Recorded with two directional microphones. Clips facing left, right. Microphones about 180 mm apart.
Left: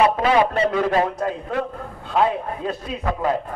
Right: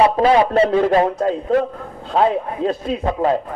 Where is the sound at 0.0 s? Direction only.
30° right (ahead or behind).